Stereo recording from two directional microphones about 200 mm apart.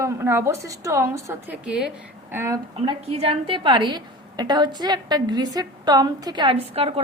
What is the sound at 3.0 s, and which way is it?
A woman's voice, 30° right (ahead or behind).